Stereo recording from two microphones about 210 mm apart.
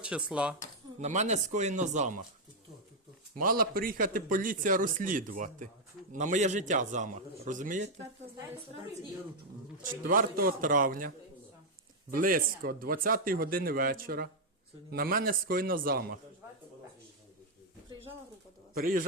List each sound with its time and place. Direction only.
0.0 s speech: 5° right (ahead or behind)
0.9 s a man's voice: 35° right (ahead or behind)
3.3 s a man's voice: 45° right (ahead or behind)
9.8 s a man's voice: 40° right (ahead or behind)
12.1 s speech: 40° right (ahead or behind)